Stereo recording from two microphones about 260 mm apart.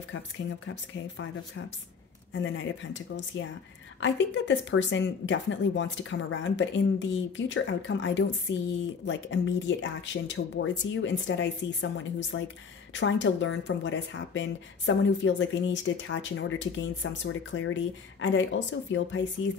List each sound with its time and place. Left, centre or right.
0.1 s speech: left